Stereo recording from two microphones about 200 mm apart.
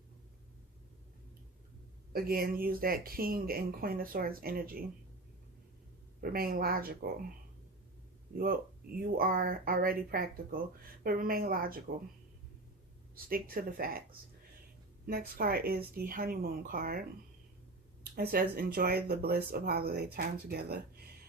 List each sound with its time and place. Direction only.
2.1 s speech: 50° right (ahead or behind)
6.3 s speech: 50° right (ahead or behind)
9.0 s speech: 45° right (ahead or behind)
13.1 s speech: 45° right (ahead or behind)
15.0 s speech: 50° right (ahead or behind)
18.2 s speech: 50° right (ahead or behind)